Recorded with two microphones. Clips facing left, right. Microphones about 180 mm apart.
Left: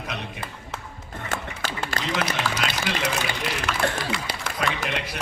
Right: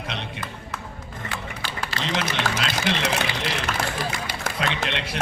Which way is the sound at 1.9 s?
50° left (ahead or behind).